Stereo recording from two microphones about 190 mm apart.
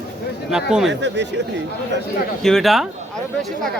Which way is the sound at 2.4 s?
Centre (ahead or behind).